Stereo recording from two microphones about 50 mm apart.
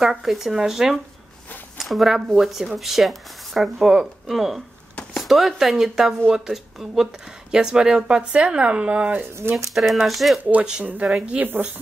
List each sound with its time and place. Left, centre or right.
0.0 s speech: centre
9.3 s speech: right
9.7 s speech: centre
10.8 s speech: right
11.1 s speech: centre
11.3 s speech: right